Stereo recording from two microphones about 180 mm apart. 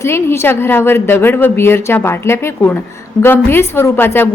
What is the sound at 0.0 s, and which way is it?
A woman's voice, 15° left (ahead or behind).